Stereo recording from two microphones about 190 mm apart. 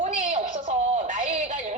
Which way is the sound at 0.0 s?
40° right (ahead or behind).